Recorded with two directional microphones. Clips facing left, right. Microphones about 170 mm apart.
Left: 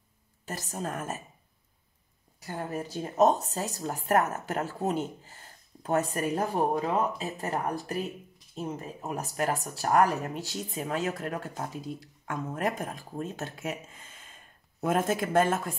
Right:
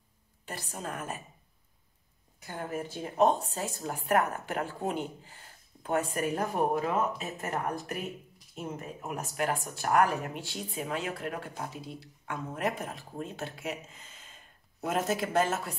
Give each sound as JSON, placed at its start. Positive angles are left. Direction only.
{"t": 0.5, "sound": "speech", "side_deg": 40}
{"t": 2.4, "sound": "speech", "side_deg": 35}